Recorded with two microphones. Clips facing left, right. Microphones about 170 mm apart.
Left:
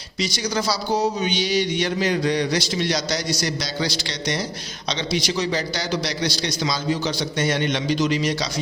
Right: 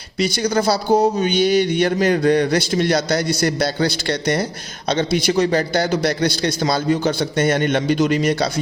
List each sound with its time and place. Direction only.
0.2 s a man's voice: 55° right (ahead or behind)